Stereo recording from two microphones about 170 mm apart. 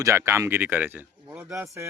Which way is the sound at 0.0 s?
15° right (ahead or behind).